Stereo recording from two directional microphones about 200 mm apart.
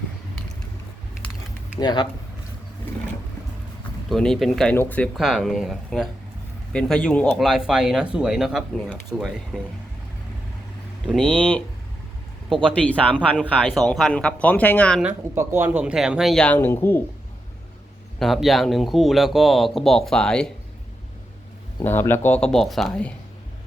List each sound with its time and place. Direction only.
1.8 s speech: 20° left (ahead or behind)
4.1 s speech: centre (ahead or behind)
11.0 s speech: 5° left (ahead or behind)
12.6 s speech: 5° left (ahead or behind)
15.0 s speech: 10° right (ahead or behind); by 17.0 s 10° left (ahead or behind)
18.2 s speech: centre (ahead or behind)
21.8 s speech: 10° left (ahead or behind)